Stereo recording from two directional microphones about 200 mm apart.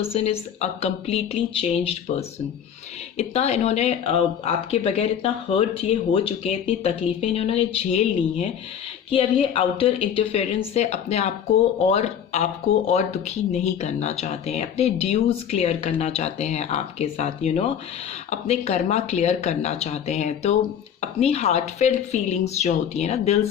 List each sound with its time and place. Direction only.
0.0 s speech: 30° left (ahead or behind)
3.2 s speech: 35° left (ahead or behind)